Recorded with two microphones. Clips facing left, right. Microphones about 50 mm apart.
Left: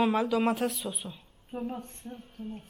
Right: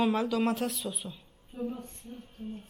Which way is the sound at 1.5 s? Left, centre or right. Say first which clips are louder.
Even; left.